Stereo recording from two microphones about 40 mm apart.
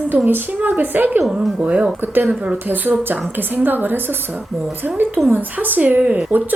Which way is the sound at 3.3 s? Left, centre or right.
Right.